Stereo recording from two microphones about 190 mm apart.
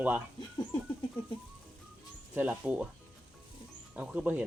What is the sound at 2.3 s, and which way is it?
Speech, 5° right (ahead or behind).